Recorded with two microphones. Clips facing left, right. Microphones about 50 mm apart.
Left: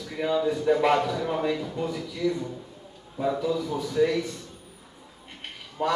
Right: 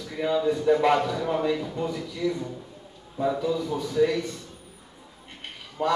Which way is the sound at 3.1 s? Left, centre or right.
Centre.